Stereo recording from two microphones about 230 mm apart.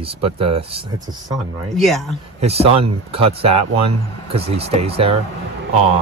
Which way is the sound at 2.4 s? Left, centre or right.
Right.